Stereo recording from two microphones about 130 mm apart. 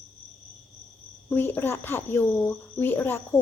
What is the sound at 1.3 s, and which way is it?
A woman's voice, 15° left (ahead or behind).